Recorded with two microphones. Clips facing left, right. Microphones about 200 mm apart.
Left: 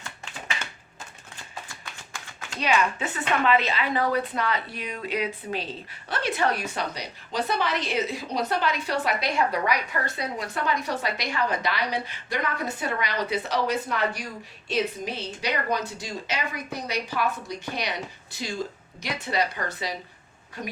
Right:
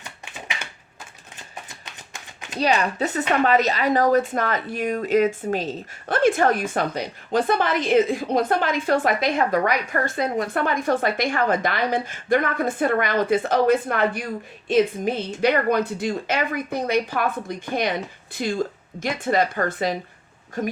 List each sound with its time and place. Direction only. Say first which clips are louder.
0.0 s typewriter: right 1 dB; 15° right (ahead or behind)
1.4 s a sound: right 1 dB; 20° right (ahead or behind)
2.6 s speech: right 4 dB; 35° right (ahead or behind)